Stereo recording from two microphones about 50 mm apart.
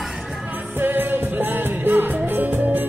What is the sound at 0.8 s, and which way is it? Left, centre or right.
Music, right.